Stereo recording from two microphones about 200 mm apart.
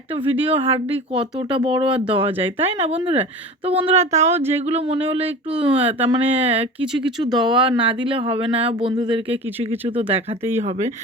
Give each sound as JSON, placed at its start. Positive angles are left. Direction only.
{"t": 0.5, "sound": "speech", "side_deg": -30}